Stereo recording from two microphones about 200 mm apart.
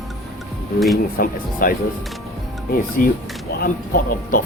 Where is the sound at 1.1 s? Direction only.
45° left (ahead or behind).